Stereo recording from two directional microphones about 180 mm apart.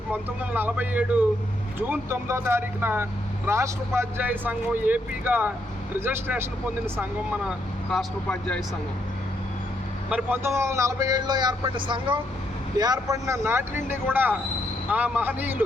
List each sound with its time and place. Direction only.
0.1 s speech: 10° right (ahead or behind)
7.9 s speech: 5° left (ahead or behind)
10.1 s speech: 10° right (ahead or behind)